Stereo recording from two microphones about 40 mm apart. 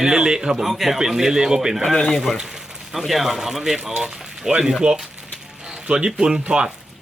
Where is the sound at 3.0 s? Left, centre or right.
Centre.